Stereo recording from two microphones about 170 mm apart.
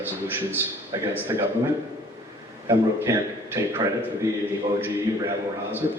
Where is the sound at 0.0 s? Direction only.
10° right (ahead or behind).